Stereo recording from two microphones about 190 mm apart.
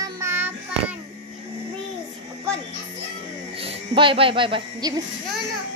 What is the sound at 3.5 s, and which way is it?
Speech, 30° right (ahead or behind).